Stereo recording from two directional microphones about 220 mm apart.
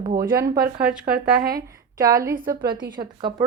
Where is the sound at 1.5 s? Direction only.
15° right (ahead or behind).